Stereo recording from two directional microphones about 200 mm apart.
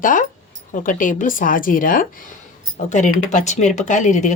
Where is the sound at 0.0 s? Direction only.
40° left (ahead or behind).